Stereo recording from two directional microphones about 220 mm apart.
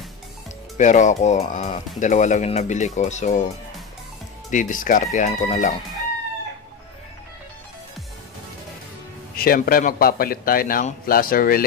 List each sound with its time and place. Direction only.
0.7 s a man's voice: 35° left (ahead or behind)
4.5 s a man's voice: 35° left (ahead or behind)
9.3 s a man's voice: 40° left (ahead or behind)